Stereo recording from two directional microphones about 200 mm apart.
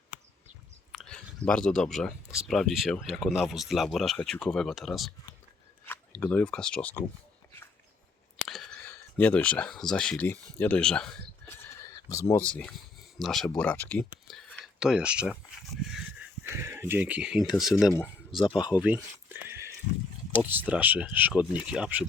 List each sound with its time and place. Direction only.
0.9 s speech: 5° left (ahead or behind)
8.4 s speech: centre (ahead or behind)
11.4 s a sound: 15° left (ahead or behind)
12.3 s speech: 5° left (ahead or behind)
14.3 s a sound: centre (ahead or behind)
17.7 s speech: centre (ahead or behind)
18.3 s speech: 25° left (ahead or behind)
18.8 s a sound: 10° right (ahead or behind)
20.4 s speech: 10° right (ahead or behind)